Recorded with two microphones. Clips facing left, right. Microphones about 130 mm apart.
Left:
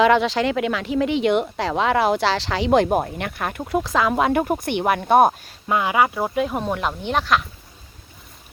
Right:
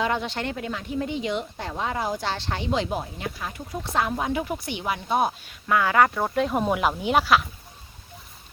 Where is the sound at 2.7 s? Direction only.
55° left (ahead or behind).